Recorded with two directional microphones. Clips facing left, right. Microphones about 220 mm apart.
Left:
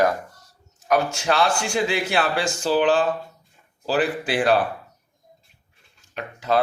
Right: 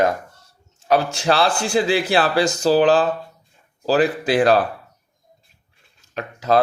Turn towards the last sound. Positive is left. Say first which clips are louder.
# right 4 dB
turn(degrees=-40)  # may be behind; listen again after turning